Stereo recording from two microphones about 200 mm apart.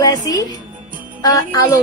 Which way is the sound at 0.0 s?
20° left (ahead or behind).